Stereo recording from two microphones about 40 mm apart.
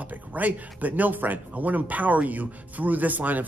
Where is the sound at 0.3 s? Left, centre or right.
Right.